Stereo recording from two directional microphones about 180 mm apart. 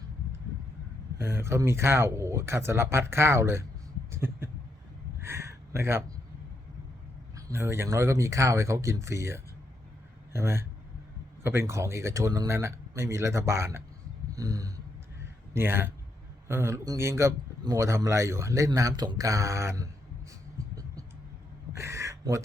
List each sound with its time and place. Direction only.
1.2 s a man's voice: 15° right (ahead or behind)
4.1 s a sound: 15° right (ahead or behind)
7.3 s a man's voice: 15° right (ahead or behind)
14.3 s a sound: 20° right (ahead or behind)
15.5 s a man's voice: 15° right (ahead or behind)
21.8 s speech: 15° right (ahead or behind)